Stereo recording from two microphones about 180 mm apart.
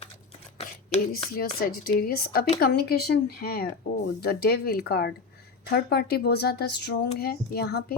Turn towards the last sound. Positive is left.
turn(degrees=65)  # may be behind; listen again after turning